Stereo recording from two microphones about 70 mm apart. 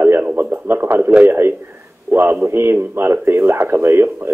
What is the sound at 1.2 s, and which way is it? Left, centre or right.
Speech, right.